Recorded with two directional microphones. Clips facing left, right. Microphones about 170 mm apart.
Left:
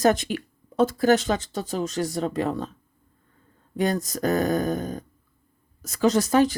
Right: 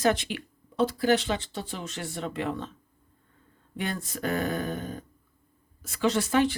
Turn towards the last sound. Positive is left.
turn(degrees=40)  # may be behind; listen again after turning